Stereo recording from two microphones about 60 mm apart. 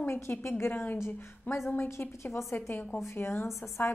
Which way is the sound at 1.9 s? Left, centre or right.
Left.